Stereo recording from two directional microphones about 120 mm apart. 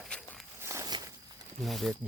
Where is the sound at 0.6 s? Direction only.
25° right (ahead or behind).